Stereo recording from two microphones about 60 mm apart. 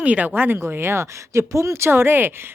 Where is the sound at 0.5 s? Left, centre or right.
Right.